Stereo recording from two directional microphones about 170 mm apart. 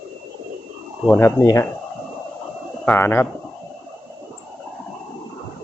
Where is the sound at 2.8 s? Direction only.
10° left (ahead or behind).